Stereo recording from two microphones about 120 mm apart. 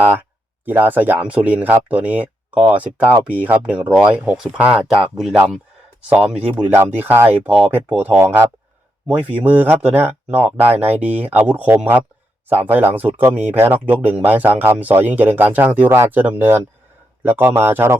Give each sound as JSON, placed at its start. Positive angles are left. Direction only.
{"t": 0.0, "sound": "speech", "side_deg": -15}